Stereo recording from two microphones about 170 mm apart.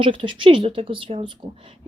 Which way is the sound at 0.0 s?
30° right (ahead or behind).